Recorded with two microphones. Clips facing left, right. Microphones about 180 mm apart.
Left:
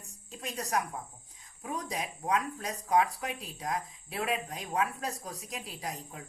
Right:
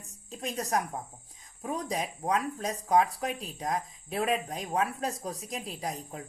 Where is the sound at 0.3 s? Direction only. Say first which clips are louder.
Right 4 dB; 35° right (ahead or behind).